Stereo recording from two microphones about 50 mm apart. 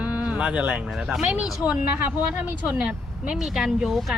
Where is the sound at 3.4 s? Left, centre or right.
Centre.